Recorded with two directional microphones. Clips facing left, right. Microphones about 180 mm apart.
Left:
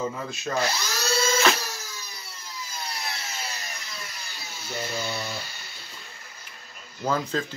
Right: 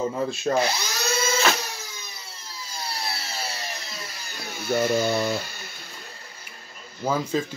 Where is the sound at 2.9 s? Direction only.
35° right (ahead or behind).